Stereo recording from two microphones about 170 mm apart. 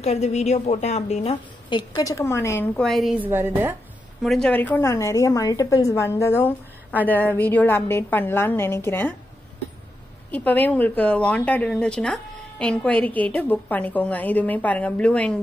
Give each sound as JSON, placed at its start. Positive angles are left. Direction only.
{"t": 0.0, "sound": "a woman's voice", "side_deg": 40}
{"t": 3.3, "sound": "a woman's voice", "side_deg": -10}
{"t": 4.2, "sound": "a woman's voice", "side_deg": 5}
{"t": 10.3, "sound": "a woman's voice", "side_deg": 10}